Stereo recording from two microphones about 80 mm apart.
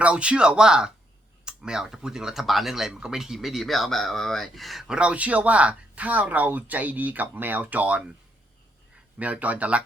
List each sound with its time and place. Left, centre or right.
0.0 s speech: centre
9.1 s speech: centre